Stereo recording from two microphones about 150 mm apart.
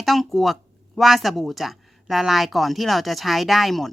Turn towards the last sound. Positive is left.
turn(degrees=0)  # may be behind; listen again after turning